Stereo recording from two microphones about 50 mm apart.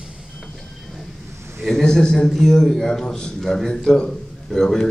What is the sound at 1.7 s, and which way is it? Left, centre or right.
A man's voice, centre.